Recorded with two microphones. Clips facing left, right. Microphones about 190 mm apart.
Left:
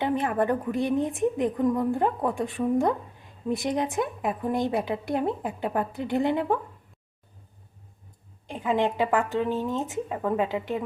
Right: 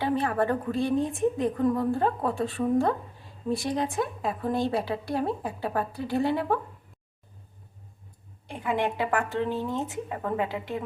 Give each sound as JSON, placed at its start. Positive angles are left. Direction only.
{"t": 0.0, "sound": "a woman's voice", "side_deg": 20}
{"t": 8.4, "sound": "speech", "side_deg": 15}